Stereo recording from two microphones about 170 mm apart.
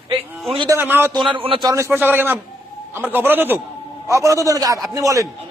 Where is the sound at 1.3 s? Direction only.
30° right (ahead or behind).